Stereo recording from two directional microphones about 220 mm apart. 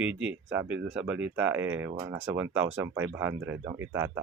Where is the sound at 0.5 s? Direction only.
55° right (ahead or behind).